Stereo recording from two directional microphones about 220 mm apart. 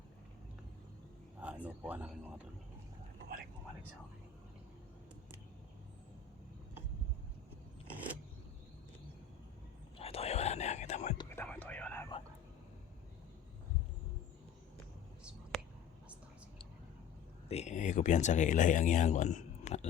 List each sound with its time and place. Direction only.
1.4 s speech: 5° right (ahead or behind)
10.0 s whispering: 25° left (ahead or behind)
11.2 s whispering: 10° left (ahead or behind)
15.2 s whispering: 5° right (ahead or behind)
17.5 s speech: 30° left (ahead or behind)